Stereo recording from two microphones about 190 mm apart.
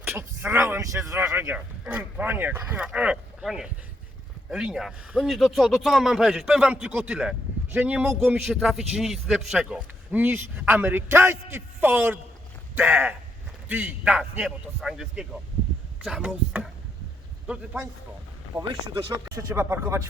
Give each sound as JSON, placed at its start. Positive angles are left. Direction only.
{"t": 0.0, "sound": "a man's voice", "side_deg": -10}
{"t": 18.5, "sound": "speech", "side_deg": -15}